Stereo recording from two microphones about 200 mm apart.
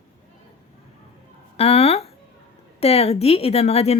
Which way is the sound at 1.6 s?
30° left (ahead or behind).